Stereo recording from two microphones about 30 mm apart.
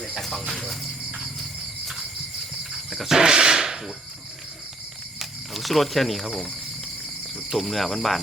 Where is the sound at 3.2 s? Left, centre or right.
Right.